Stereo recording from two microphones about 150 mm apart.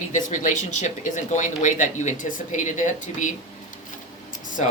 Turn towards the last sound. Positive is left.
turn(degrees=60)  # may be behind; listen again after turning